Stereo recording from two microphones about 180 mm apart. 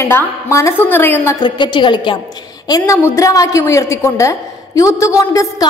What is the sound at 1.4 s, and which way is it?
Speech, 25° left (ahead or behind).